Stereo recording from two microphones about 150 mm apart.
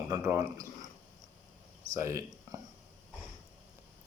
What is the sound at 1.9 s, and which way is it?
Speech, 20° right (ahead or behind).